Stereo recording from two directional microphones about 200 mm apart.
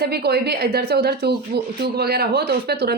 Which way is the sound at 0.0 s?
55° right (ahead or behind).